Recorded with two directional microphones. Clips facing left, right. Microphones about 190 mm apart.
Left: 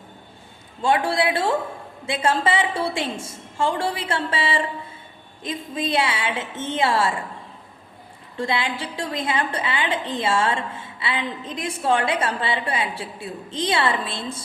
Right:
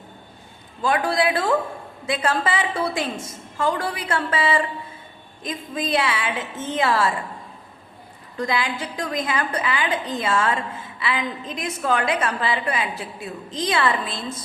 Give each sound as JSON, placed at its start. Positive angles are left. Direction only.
{"t": 0.8, "sound": "a woman's voice", "side_deg": 30}
{"t": 8.4, "sound": "a woman's voice", "side_deg": 25}